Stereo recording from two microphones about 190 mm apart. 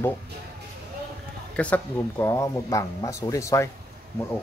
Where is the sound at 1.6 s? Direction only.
10° left (ahead or behind).